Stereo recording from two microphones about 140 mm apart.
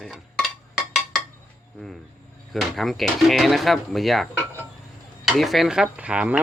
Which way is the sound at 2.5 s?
Centre (ahead or behind).